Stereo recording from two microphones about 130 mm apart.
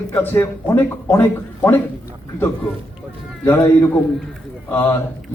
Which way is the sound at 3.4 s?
30° left (ahead or behind).